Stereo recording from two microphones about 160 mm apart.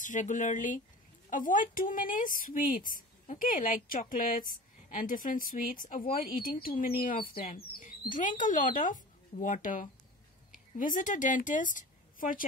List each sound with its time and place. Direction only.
0.0 s speech: 50° left (ahead or behind)
7.3 s speech: 40° left (ahead or behind)
7.8 s a woman's voice: 55° left (ahead or behind)